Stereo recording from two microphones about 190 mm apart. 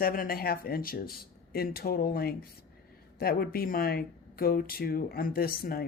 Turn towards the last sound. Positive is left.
turn(degrees=50)  # may be behind; listen again after turning